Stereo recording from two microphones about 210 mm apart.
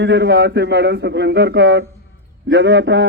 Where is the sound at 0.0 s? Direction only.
55° right (ahead or behind).